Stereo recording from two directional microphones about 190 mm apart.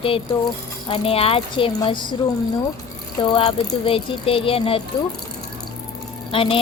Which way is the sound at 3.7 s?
30° left (ahead or behind).